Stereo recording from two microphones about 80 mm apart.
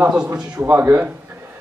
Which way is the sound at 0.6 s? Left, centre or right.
Right.